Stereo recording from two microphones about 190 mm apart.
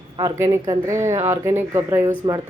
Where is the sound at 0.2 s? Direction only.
15° right (ahead or behind).